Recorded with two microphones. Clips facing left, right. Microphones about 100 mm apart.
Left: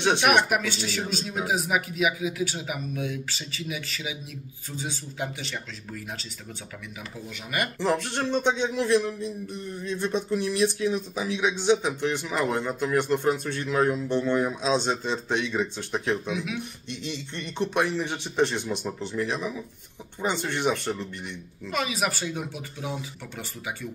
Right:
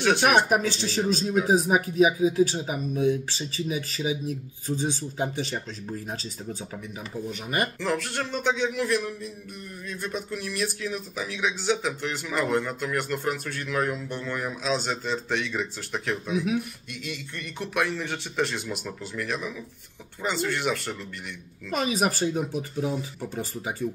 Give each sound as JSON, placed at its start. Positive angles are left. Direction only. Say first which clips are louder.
{"t": 0.5, "sound": "speech", "louder": "right 2 dB", "side_deg": -35}
{"t": 7.2, "sound": "speech", "louder": "right 2 dB", "side_deg": -30}
{"t": 7.8, "sound": "speech", "louder": "left 2 dB", "side_deg": 20}
{"t": 21.7, "sound": "speech", "louder": "right 3 dB", "side_deg": -40}